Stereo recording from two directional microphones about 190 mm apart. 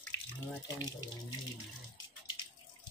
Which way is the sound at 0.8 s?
20° left (ahead or behind).